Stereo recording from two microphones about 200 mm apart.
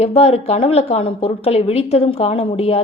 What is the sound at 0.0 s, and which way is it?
A woman's voice, 30° left (ahead or behind).